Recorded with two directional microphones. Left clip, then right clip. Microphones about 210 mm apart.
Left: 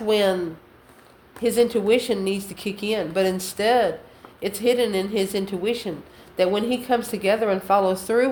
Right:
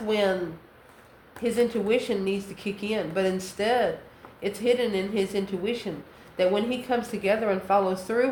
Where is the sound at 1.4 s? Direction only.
45° left (ahead or behind).